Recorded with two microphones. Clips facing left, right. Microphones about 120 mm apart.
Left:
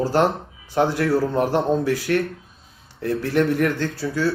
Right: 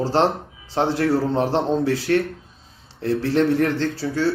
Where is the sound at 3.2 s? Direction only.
25° right (ahead or behind).